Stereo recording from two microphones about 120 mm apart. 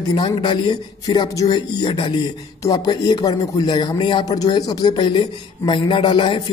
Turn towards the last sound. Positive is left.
turn(degrees=45)  # may be behind; listen again after turning